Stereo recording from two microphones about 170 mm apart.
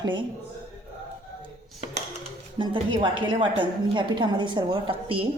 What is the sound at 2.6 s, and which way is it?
A woman's voice, 30° right (ahead or behind).